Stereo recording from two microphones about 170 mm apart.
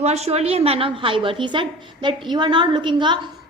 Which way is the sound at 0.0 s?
40° right (ahead or behind).